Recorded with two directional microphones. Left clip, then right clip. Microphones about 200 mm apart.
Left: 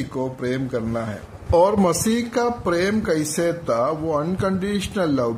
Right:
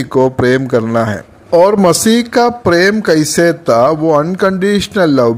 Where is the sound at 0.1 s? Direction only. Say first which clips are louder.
Right 17 dB; 40° right (ahead or behind).